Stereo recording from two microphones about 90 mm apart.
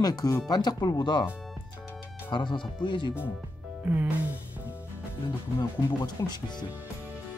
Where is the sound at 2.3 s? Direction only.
60° left (ahead or behind).